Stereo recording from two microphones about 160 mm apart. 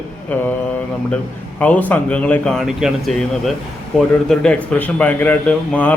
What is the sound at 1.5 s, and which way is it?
A man's voice, 10° left (ahead or behind).